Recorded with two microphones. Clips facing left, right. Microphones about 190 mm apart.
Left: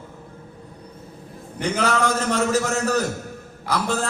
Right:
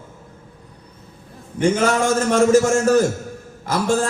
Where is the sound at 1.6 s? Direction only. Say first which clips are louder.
Right 5 dB; 50° right (ahead or behind).